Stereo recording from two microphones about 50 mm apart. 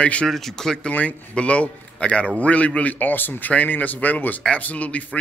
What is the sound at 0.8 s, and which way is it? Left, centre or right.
A man's voice, left.